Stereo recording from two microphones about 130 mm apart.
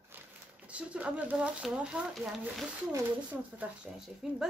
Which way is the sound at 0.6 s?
10° right (ahead or behind).